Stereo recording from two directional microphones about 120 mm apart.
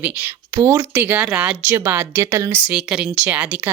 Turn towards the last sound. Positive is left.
turn(degrees=-10)  # may be behind; listen again after turning